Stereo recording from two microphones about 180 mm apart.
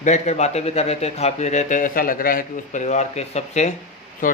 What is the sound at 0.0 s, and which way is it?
A man's voice, 40° left (ahead or behind).